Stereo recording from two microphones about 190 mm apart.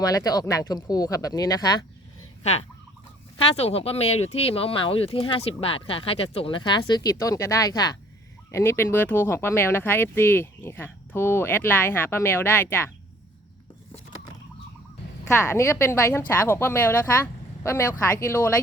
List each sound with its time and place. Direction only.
0.0 s speech: 20° left (ahead or behind)
2.4 s fowl: 35° left (ahead or behind)
3.3 s speech: 35° left (ahead or behind); by 12.9 s 10° left (ahead or behind)
15.4 s speech: 15° left (ahead or behind)